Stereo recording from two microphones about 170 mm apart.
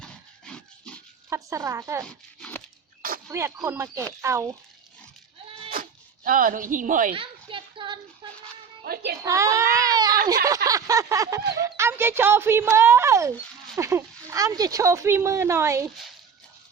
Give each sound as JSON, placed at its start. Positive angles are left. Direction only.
{"t": 0.0, "sound": "rub", "side_deg": 5}
{"t": 1.3, "sound": "speech", "side_deg": -20}
{"t": 2.0, "sound": "a sound", "side_deg": 5}
{"t": 3.3, "sound": "speech", "side_deg": -15}
{"t": 5.7, "sound": "cat", "side_deg": -55}
{"t": 7.1, "sound": "a sound", "side_deg": -30}
{"t": 8.8, "sound": "a woman's voice", "side_deg": -65}
{"t": 9.2, "sound": "speech", "side_deg": -20}
{"t": 10.7, "sound": "a sound", "side_deg": -20}
{"t": 11.6, "sound": "speech", "side_deg": -15}